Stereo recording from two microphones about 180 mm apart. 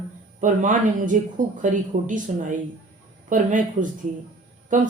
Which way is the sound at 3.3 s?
45° right (ahead or behind).